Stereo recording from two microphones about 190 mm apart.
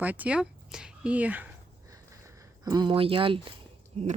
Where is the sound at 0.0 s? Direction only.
10° right (ahead or behind).